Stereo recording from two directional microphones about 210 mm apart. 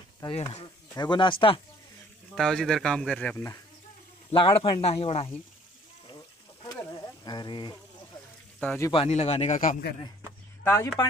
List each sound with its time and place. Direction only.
0.2 s speech: 20° left (ahead or behind)
2.3 s speech: centre (ahead or behind)
4.3 s speech: 25° left (ahead or behind)
6.6 s a sound: 20° left (ahead or behind)
8.5 s a man's voice: 10° left (ahead or behind)
8.9 s speech: 30° left (ahead or behind)
10.6 s speech: 10° left (ahead or behind)